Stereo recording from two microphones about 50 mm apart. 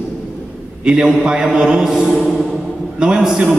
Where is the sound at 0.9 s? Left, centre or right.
Centre.